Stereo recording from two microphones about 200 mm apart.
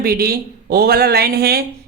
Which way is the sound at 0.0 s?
50° right (ahead or behind).